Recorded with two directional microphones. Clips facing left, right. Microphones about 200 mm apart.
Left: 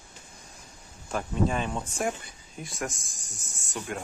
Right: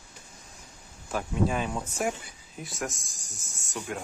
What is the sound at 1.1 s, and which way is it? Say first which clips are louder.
Speech: even; 5° right (ahead or behind).